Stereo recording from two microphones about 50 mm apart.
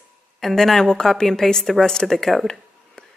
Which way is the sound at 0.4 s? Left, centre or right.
Centre.